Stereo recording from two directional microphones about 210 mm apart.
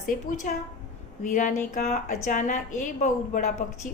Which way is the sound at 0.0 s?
40° left (ahead or behind).